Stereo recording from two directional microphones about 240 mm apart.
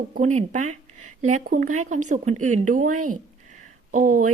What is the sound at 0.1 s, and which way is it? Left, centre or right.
Speech, right.